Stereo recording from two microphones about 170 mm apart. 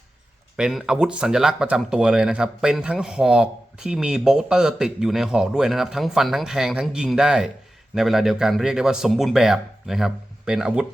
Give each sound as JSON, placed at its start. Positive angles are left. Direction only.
{"t": 0.5, "sound": "speech", "side_deg": -5}